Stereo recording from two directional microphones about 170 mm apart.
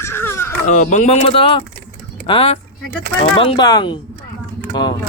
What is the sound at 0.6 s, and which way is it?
Speech, 45° left (ahead or behind).